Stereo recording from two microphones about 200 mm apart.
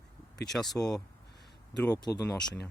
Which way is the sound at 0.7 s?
20° left (ahead or behind).